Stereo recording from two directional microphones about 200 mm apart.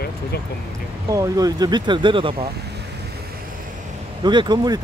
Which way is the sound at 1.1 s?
15° right (ahead or behind).